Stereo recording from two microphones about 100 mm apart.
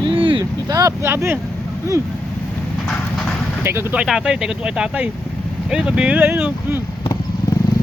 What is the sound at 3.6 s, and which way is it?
Speech, 25° right (ahead or behind).